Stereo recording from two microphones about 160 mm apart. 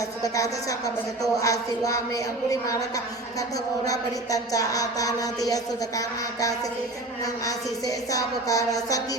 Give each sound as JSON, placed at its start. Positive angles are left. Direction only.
{"t": 0.2, "sound": "speech", "side_deg": 20}
{"t": 3.8, "sound": "speech", "side_deg": 20}
{"t": 7.4, "sound": "speech", "side_deg": 20}